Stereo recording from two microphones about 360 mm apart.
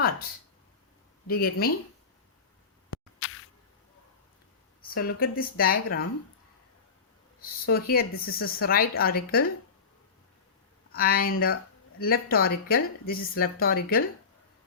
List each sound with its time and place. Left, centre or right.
1.3 s speech: left
2.9 s a sound: left
4.9 s speech: left
7.4 s speech: left
10.9 s speech: left